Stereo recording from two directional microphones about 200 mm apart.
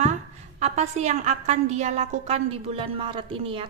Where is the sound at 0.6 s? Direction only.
35° right (ahead or behind).